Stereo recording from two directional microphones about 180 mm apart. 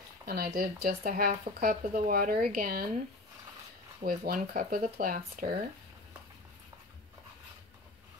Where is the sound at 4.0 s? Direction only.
55° right (ahead or behind).